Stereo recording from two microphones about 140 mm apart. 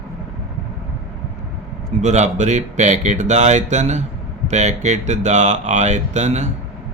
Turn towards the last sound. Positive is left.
turn(degrees=-55)  # may be behind; listen again after turning